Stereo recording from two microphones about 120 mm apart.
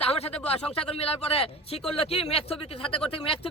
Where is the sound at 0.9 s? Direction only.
55° left (ahead or behind).